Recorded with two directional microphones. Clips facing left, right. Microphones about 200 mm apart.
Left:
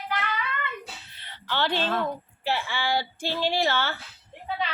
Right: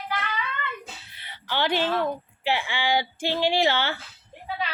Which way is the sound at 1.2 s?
10° right (ahead or behind).